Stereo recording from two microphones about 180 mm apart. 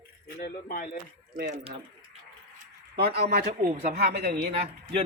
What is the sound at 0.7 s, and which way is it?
Speech, 55° left (ahead or behind).